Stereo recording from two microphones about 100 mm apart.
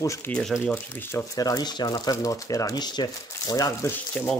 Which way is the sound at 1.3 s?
35° left (ahead or behind).